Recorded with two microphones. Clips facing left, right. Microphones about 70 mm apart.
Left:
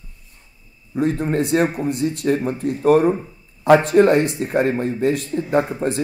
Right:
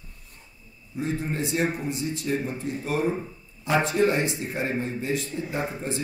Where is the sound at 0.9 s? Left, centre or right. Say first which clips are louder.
Left 9 dB; left.